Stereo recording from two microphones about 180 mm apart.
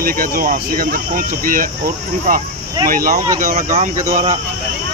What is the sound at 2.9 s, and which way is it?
Speech, 50° right (ahead or behind).